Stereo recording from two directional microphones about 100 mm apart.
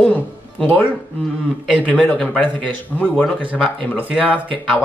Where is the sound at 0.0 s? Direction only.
10° left (ahead or behind).